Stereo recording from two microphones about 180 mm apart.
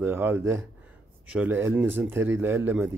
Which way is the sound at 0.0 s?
10° right (ahead or behind).